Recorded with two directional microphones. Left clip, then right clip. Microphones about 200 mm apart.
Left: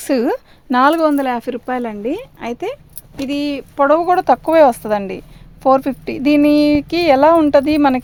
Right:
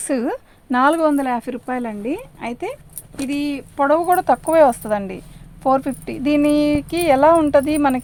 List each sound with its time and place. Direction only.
0.0 s speech: 50° left (ahead or behind)